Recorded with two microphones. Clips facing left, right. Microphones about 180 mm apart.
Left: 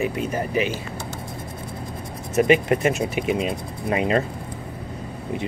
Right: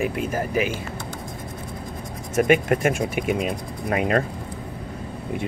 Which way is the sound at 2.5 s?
50° right (ahead or behind).